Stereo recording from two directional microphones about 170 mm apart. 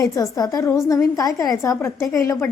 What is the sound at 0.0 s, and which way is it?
A woman's voice, 20° left (ahead or behind).